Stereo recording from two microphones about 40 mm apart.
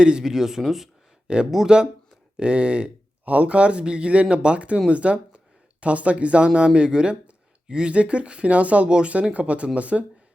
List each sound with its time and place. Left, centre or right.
0.0 s speech: centre
2.4 s speech: right